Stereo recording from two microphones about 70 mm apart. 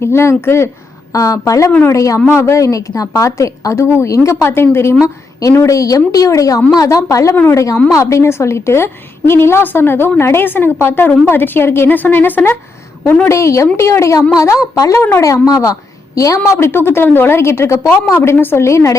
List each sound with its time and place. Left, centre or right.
0.0 s a woman's voice: left
1.1 s a woman's voice: left
13.2 s a woman's voice: left
16.4 s a woman's voice: left